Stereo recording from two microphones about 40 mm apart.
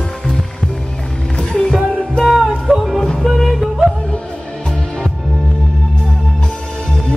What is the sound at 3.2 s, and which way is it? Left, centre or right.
Yodeling, centre.